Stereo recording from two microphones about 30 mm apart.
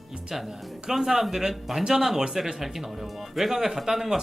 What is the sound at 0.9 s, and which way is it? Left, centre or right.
Speech, centre.